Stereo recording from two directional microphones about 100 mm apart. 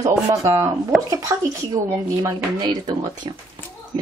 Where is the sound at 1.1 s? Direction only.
30° right (ahead or behind).